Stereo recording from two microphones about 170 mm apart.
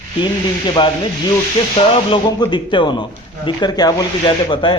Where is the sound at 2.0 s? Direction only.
30° left (ahead or behind).